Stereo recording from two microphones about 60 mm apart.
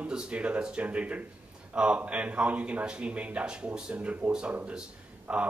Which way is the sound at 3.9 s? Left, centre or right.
Right.